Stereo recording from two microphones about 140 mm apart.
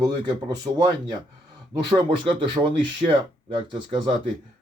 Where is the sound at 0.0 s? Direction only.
30° right (ahead or behind).